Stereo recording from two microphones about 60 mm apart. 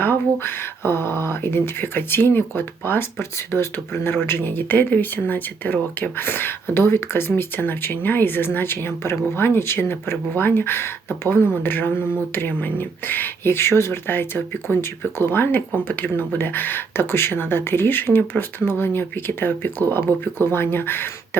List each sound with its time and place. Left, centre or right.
0.0 s speech: left
20.1 s speech: right
20.5 s speech: left